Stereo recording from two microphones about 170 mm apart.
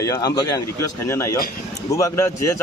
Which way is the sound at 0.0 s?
20° left (ahead or behind).